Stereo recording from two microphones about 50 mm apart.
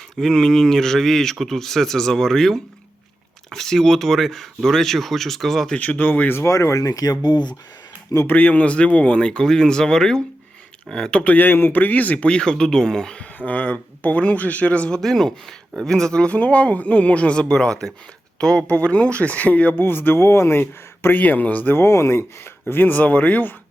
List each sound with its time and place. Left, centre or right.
0.2 s speech: centre
5.7 s speech: left
6.3 s speech: left
8.3 s speech: left; by 11.2 s centre
11.2 s speech: left; by 13.2 s centre
13.4 s speech: left
14.9 s speech: centre
16.3 s speech: left
17.5 s speech: centre; by 19.7 s left
19.8 s speech: left
20.6 s speech: left
21.8 s speech: left
22.7 s speech: left